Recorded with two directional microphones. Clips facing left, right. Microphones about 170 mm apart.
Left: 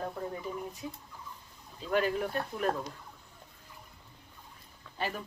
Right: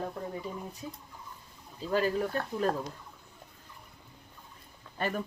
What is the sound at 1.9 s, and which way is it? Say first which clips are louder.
Speech: right 1 dB; 35° right (ahead or behind).